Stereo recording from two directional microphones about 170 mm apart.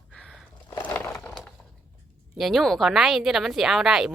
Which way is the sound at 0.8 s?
10° left (ahead or behind).